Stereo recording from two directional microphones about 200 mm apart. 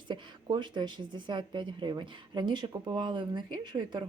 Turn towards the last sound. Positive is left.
turn(degrees=-20)  # may be behind; listen again after turning